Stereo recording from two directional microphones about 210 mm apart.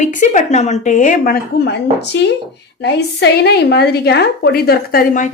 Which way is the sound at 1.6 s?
55° left (ahead or behind).